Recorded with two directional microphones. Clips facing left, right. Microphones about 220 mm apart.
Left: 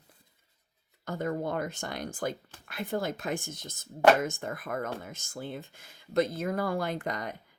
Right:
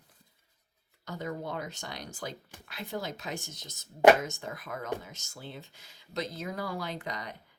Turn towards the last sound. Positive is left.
turn(degrees=50)  # may be behind; listen again after turning